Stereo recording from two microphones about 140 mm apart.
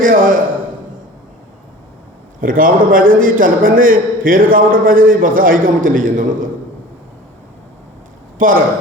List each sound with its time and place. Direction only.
0.0 s a man's voice: 80° right
2.4 s a man's voice: 85° right
8.4 s speech: 75° right (ahead or behind)